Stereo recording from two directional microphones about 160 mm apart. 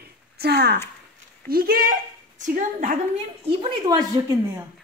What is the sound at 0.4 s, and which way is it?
Speech, 80° right.